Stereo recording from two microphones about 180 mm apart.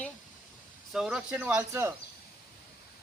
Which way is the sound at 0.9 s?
5° right (ahead or behind).